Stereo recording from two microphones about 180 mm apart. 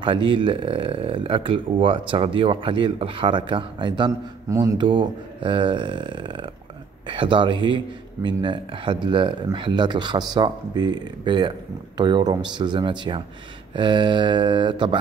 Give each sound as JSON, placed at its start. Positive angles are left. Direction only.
{"t": 0.0, "sound": "speech", "side_deg": -30}